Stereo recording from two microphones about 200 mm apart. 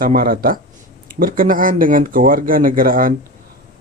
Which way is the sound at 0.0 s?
45° right (ahead or behind).